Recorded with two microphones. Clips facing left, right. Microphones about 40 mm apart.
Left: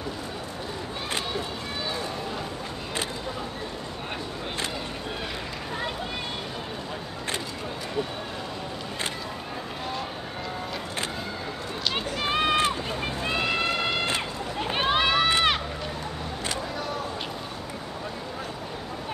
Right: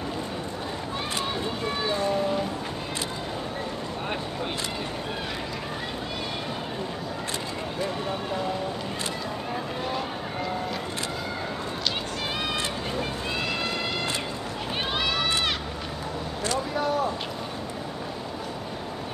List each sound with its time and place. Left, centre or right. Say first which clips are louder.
12.3 s run: left 8 dB; left
13.3 s cat: left 6 dB; centre
14.8 s run: left 5 dB; left